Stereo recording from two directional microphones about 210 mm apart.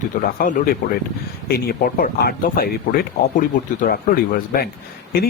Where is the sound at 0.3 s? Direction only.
45° left (ahead or behind).